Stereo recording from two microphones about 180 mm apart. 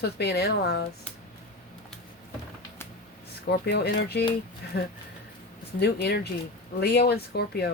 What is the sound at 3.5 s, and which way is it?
Speech, 65° left (ahead or behind).